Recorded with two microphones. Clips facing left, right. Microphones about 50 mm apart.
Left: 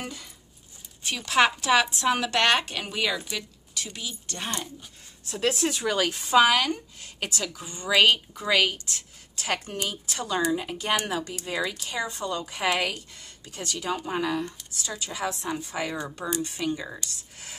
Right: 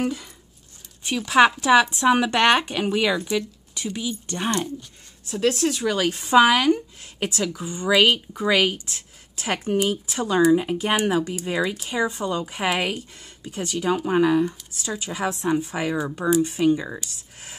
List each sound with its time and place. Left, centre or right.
1.0 s speech: centre
5.2 s speech: centre
6.0 s speech: centre